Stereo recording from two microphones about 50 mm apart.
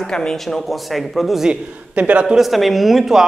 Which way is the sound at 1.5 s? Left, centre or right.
Right.